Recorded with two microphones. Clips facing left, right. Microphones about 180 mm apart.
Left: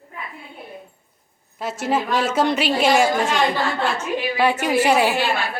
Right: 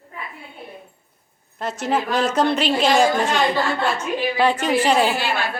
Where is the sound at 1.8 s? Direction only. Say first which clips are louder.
Even; 5° left (ahead or behind).